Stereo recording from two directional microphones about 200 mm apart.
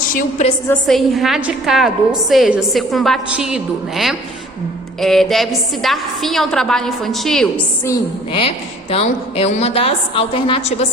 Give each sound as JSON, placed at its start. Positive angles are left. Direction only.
{"t": 0.1, "sound": "a woman's voice", "side_deg": 45}
{"t": 0.7, "sound": "a woman's voice", "side_deg": 0}
{"t": 8.3, "sound": "a woman's voice", "side_deg": 30}